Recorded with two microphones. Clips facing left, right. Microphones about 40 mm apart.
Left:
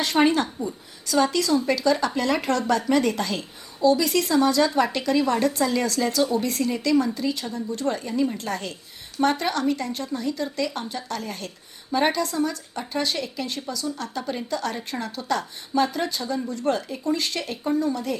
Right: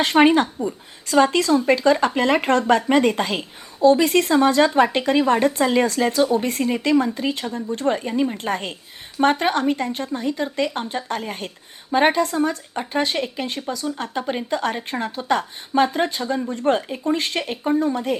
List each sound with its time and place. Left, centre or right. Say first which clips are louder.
0.0 s speech: right 5 dB; right